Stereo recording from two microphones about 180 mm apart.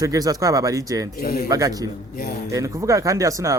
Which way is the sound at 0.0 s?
20° right (ahead or behind).